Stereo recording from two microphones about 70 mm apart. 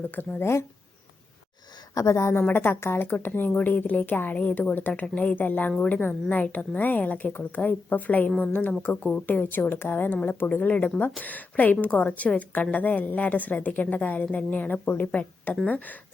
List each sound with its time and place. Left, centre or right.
0.1 s speech: left
2.0 s speech: left
2.4 s a woman's voice: left